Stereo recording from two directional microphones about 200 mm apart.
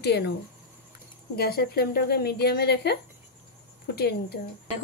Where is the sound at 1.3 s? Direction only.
50° left (ahead or behind).